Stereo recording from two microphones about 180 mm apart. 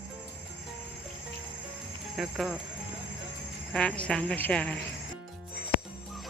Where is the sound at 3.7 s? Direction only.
5° left (ahead or behind).